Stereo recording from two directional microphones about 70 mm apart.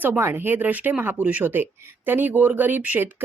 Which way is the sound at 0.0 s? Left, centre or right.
Right.